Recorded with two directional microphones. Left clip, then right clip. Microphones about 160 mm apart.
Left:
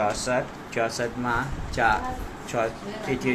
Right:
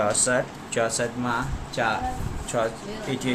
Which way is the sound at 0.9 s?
5° right (ahead or behind).